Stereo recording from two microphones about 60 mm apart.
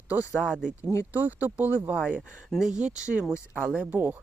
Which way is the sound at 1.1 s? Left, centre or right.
Right.